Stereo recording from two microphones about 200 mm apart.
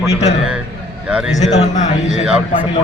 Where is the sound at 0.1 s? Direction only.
30° left (ahead or behind).